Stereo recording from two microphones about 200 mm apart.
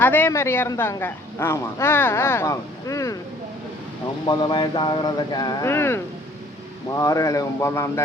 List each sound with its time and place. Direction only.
0.0 s a woman's voice: 10° left (ahead or behind)
4.3 s a woman's voice: 25° left (ahead or behind)